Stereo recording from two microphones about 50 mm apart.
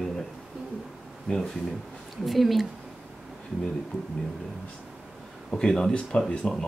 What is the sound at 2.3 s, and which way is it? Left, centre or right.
Speech, centre.